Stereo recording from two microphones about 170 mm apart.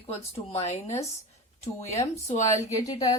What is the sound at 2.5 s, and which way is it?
Speech, 20° left (ahead or behind).